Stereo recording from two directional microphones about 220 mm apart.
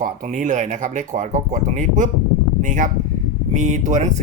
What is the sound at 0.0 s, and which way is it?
Speech, 35° right (ahead or behind).